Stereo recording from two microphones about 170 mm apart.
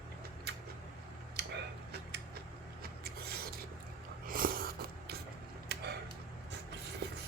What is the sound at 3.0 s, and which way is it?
Rub, 65° right (ahead or behind).